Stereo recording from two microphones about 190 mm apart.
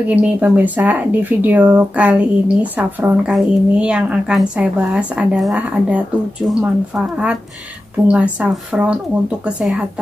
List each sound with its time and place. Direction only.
0.1 s speech: 10° right (ahead or behind)
8.1 s speech: 5° right (ahead or behind)